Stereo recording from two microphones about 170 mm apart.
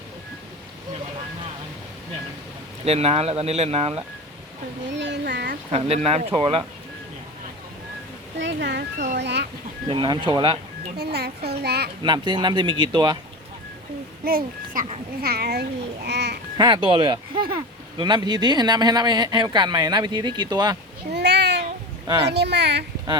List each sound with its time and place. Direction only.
2.8 s speech: 35° right (ahead or behind)
4.9 s speech: 90° right; by 5.5 s 75° right (ahead or behind)
5.7 s speech: 35° right (ahead or behind)
8.4 s speech: 90° right
9.9 s speech: 30° right (ahead or behind)
10.9 s speech: 75° right (ahead or behind)
12.0 s speech: 25° right (ahead or behind)
14.3 s a child's voice: 55° right (ahead or behind)
15.2 s speech: 65° right (ahead or behind)
16.0 s speech: 80° right
16.6 s speech: 25° right (ahead or behind)
21.1 s cat: 85° right
22.3 s speech: 80° right